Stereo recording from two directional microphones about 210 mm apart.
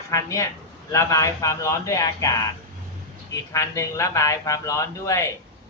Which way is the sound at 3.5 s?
15° left (ahead or behind).